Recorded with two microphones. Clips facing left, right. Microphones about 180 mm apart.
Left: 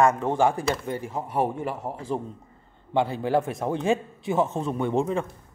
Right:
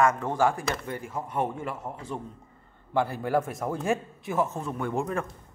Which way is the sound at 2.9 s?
20° left (ahead or behind).